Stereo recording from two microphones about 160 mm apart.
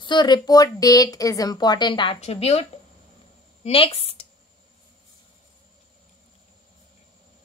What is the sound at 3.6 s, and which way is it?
Speech, 35° left (ahead or behind).